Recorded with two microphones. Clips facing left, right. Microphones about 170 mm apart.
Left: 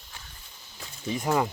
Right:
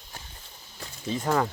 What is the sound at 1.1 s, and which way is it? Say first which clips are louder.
Speech: even; 15° left (ahead or behind).